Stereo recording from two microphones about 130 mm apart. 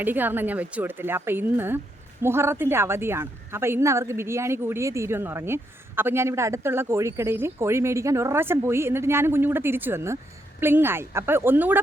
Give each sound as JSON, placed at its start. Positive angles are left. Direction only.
{"t": 0.0, "sound": "a woman's voice", "side_deg": -15}